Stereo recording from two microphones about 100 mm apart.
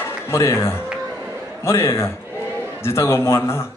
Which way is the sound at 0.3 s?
30° left (ahead or behind).